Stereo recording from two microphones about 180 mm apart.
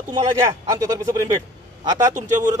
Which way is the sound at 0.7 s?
20° right (ahead or behind).